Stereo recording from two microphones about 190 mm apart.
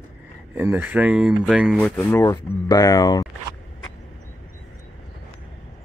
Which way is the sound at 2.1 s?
20° left (ahead or behind).